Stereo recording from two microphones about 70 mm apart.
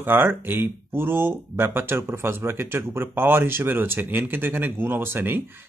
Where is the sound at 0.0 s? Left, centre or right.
Right.